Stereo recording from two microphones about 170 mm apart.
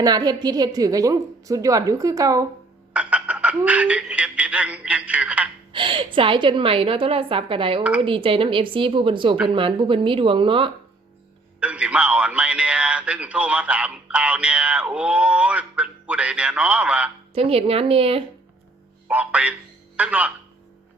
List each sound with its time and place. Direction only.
0.0 s a woman's voice: 25° right (ahead or behind)
2.9 s speech: 10° right (ahead or behind)
5.7 s a woman's voice: 30° right (ahead or behind)
11.6 s a man's voice: 5° right (ahead or behind)
17.3 s speech: 35° right (ahead or behind)
19.0 s a man's voice: 10° right (ahead or behind)